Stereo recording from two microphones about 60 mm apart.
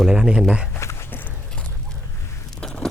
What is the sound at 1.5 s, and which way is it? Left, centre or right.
Horse, centre.